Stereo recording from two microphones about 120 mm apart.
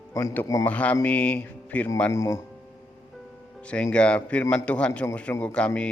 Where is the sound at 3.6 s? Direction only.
10° left (ahead or behind).